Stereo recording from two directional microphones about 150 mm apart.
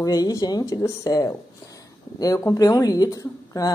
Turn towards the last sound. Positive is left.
turn(degrees=25)  # may be behind; listen again after turning